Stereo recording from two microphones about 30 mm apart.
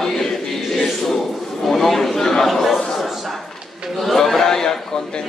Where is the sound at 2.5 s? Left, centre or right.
Centre.